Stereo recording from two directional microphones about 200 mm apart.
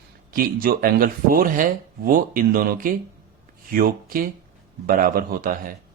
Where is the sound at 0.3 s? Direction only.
45° right (ahead or behind).